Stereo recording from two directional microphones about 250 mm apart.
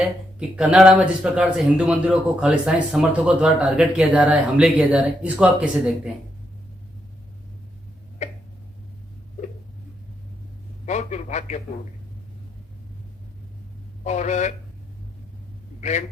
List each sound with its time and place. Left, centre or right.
0.3 s a man's voice: centre
8.2 s tick-tock: left
10.8 s a man's voice: left
14.0 s a man's voice: left
15.8 s a man's voice: left